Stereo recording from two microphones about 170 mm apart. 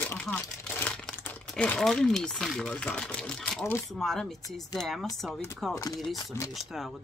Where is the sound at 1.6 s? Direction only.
5° left (ahead or behind).